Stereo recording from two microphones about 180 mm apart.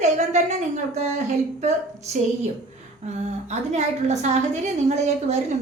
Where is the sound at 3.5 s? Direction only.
40° right (ahead or behind).